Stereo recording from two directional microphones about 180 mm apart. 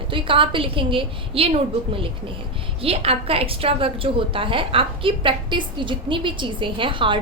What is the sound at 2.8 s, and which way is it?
A woman's voice, 30° right (ahead or behind).